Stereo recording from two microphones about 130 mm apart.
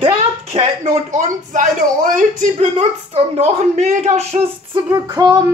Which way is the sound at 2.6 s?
50° right (ahead or behind).